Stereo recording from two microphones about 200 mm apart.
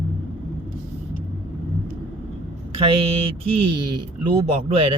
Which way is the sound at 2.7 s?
25° right (ahead or behind).